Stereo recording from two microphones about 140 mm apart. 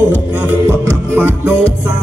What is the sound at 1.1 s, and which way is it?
Music, 15° right (ahead or behind).